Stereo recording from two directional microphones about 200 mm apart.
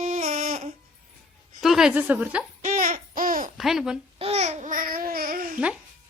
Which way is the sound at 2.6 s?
40° right (ahead or behind).